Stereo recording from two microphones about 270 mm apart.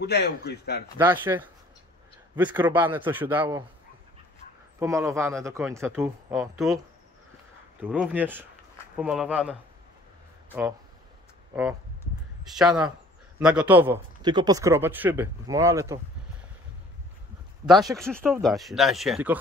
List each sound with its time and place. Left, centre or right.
0.0 s speech: left
0.9 s a man's voice: centre
4.7 s a man's voice: centre
7.8 s a man's voice: centre
12.0 s a sound: centre
13.4 s a man's voice: centre
17.6 s speech: centre